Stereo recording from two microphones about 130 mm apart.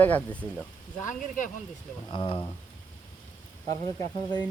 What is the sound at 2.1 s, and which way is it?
Speech, 40° left (ahead or behind).